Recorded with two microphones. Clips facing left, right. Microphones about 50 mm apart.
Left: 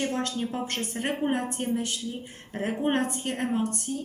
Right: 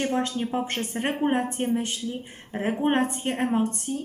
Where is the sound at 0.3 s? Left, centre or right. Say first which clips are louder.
Right 3 dB; right.